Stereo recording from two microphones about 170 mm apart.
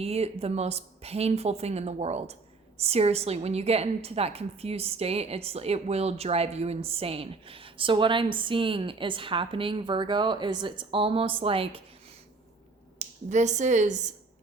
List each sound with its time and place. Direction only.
0.0 s a woman's voice: 35° right (ahead or behind)
13.0 s speech: 45° right (ahead or behind)